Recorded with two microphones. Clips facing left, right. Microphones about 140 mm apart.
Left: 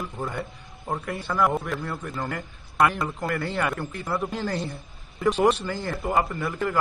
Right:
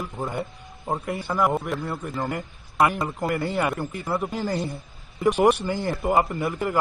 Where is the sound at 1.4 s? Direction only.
Centre (ahead or behind).